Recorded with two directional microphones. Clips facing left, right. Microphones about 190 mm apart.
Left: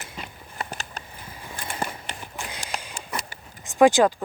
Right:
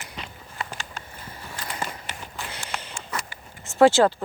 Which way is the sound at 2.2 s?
15° left (ahead or behind).